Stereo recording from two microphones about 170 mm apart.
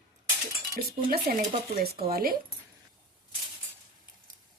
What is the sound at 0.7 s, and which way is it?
A woman's voice, 60° right (ahead or behind).